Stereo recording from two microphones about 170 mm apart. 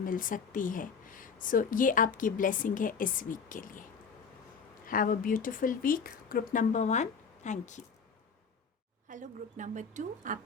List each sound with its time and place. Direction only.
0.0 s speech: 55° left (ahead or behind)
4.9 s speech: 55° left (ahead or behind)
9.0 s a woman's voice: 50° right (ahead or behind)